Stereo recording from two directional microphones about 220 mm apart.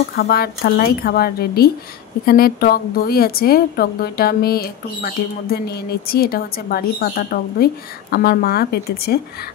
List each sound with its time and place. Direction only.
0.1 s a woman's voice: 45° left (ahead or behind)